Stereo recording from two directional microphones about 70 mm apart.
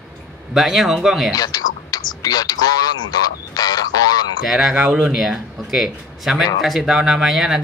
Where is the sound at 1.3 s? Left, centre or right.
Left.